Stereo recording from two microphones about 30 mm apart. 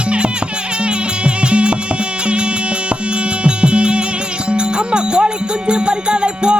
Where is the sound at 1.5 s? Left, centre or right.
Right.